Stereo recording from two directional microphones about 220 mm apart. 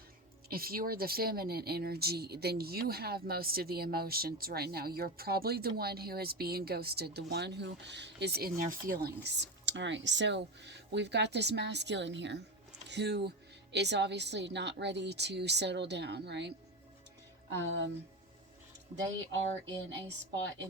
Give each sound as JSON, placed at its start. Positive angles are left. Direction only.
{"t": 0.4, "sound": "speech", "side_deg": -45}
{"t": 17.7, "sound": "speech", "side_deg": -55}
{"t": 19.3, "sound": "speech", "side_deg": -55}